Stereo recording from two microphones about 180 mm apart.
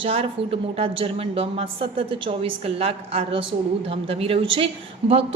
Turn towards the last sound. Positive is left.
turn(degrees=-30)  # may be behind; listen again after turning